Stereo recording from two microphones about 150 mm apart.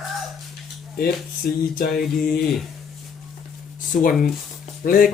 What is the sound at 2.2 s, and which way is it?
Speech, 80° left.